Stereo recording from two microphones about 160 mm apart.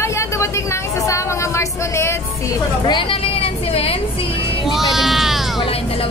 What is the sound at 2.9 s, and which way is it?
Vehicle, 30° left (ahead or behind).